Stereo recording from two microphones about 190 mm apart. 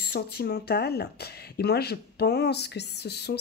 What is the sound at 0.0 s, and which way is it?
Speech, 55° left (ahead or behind).